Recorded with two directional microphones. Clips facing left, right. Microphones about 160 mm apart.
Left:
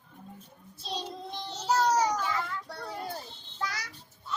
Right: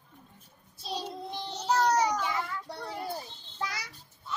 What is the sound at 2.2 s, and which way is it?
Child singing, 15° right (ahead or behind).